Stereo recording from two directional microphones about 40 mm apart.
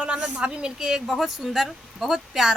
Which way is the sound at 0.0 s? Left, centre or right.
Right.